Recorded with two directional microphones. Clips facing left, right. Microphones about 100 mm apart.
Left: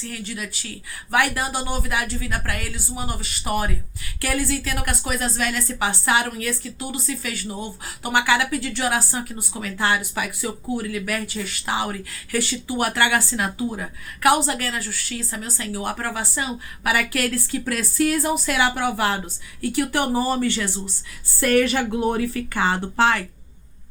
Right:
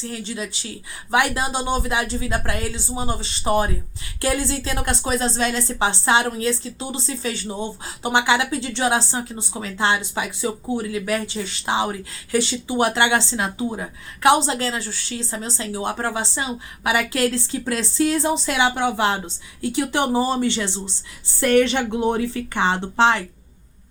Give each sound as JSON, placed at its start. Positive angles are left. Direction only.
{"t": 0.0, "sound": "speech", "side_deg": -25}